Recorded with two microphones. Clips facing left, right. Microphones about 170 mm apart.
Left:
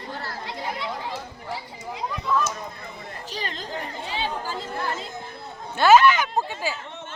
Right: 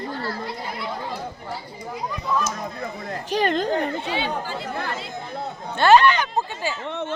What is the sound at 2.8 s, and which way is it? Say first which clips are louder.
Speech: right 7 dB; 65° right (ahead or behind).